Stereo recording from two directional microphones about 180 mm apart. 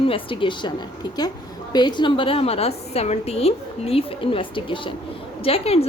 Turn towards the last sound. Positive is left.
turn(degrees=35)  # may be behind; listen again after turning